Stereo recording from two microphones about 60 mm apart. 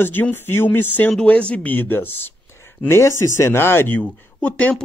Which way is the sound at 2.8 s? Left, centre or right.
Left.